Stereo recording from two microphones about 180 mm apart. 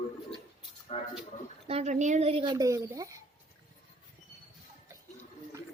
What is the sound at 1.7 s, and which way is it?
Speech, 35° right (ahead or behind).